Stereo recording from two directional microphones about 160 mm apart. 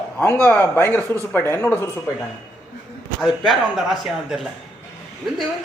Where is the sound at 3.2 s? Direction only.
Centre (ahead or behind).